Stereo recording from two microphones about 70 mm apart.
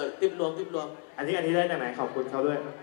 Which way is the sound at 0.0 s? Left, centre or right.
Centre.